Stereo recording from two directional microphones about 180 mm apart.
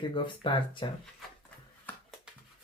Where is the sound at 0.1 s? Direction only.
25° left (ahead or behind).